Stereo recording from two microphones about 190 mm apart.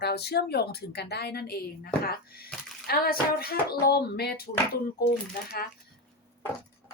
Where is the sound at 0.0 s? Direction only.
60° left (ahead or behind).